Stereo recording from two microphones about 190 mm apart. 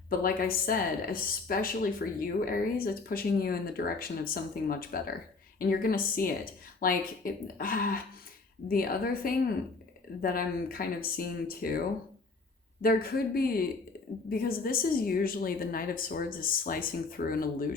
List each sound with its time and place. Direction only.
0.1 s speech: 50° left (ahead or behind)
12.8 s speech: 50° left (ahead or behind)